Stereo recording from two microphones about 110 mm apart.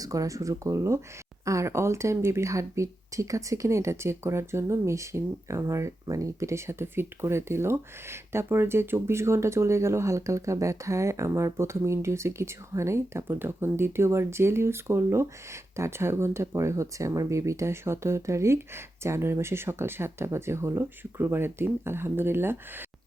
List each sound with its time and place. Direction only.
0.0 s speech: 30° right (ahead or behind)